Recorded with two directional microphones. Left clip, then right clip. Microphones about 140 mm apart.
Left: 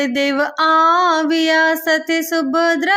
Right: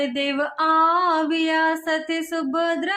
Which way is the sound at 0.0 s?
50° left (ahead or behind).